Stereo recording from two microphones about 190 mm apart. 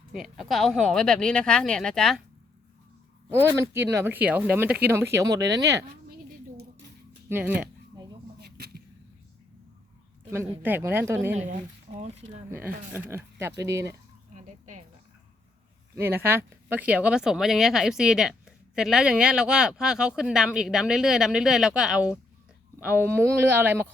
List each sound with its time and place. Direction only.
0.1 s speech: centre (ahead or behind)
3.2 s speech: 10° right (ahead or behind)
7.3 s speech: 10° right (ahead or behind)
8.4 s a sound: 55° right (ahead or behind)
10.6 s speech: 10° right (ahead or behind)
11.9 s speech: 30° right (ahead or behind)
12.5 s speech: 10° right (ahead or behind)
14.3 s a sound: 40° right (ahead or behind)
16.0 s speech: 10° right (ahead or behind)